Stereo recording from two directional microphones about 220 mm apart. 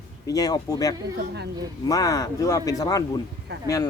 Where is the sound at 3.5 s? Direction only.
50° right (ahead or behind).